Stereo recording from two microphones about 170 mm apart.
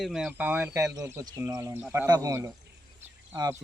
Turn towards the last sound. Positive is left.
turn(degrees=-20)  # may be behind; listen again after turning